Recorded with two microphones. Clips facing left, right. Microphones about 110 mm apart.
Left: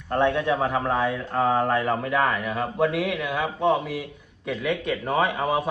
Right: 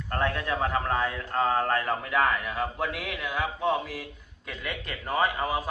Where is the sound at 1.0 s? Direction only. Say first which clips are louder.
Left 5 dB; 20° left (ahead or behind).